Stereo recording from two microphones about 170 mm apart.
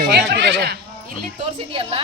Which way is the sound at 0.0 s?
65° right (ahead or behind).